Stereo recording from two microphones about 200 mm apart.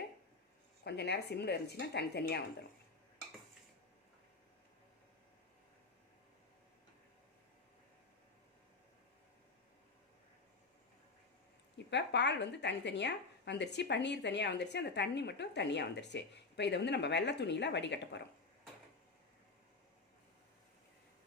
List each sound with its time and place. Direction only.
0.9 s a woman's voice: 55° left (ahead or behind)
11.9 s a woman's voice: 60° left (ahead or behind)